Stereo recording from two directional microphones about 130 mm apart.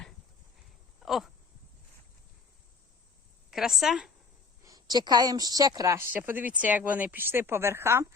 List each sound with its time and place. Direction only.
0.9 s a sound: centre (ahead or behind)
3.5 s a woman's voice: centre (ahead or behind)
4.6 s a woman's voice: 30° right (ahead or behind)